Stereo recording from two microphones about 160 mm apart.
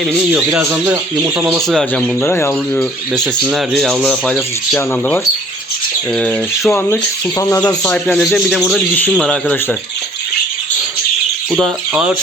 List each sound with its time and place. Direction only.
0.1 s speech: 10° right (ahead or behind)
1.6 s speech: centre (ahead or behind)
2.2 s speech: 15° left (ahead or behind)
3.4 s speech: centre (ahead or behind)
6.1 s speech: 5° left (ahead or behind)
6.7 s speech: 15° left (ahead or behind)
7.9 s speech: 5° left (ahead or behind)
11.5 s speech: 5° right (ahead or behind)